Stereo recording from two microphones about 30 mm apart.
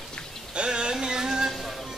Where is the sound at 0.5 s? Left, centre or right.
Right.